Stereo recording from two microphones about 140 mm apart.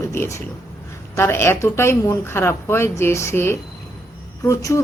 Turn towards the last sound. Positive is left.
turn(degrees=25)  # may be behind; listen again after turning